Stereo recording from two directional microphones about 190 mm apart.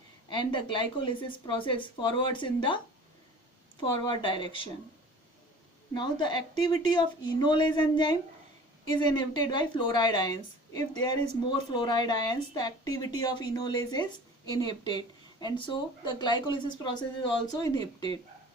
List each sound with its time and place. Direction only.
0.3 s speech: 25° left (ahead or behind)
4.1 s speech: 25° left (ahead or behind)
5.9 s speech: 25° left (ahead or behind)